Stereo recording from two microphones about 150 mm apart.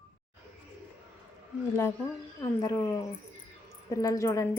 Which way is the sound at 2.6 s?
20° left (ahead or behind).